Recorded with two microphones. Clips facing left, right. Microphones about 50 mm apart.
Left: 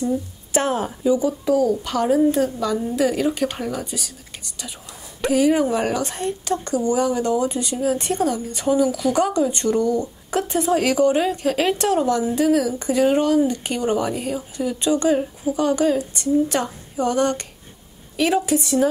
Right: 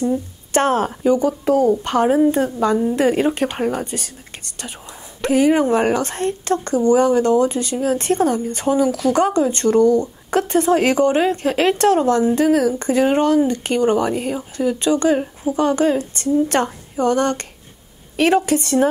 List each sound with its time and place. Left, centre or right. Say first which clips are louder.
0.5 s a woman's voice: right 4 dB; right
5.3 s a woman's voice: right 3 dB; right
11.1 s a woman's voice: right 3 dB; right
11.8 s a woman's voice: right 4 dB; right